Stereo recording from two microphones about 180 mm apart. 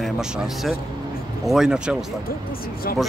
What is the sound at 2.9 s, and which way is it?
Speech, 55° left (ahead or behind).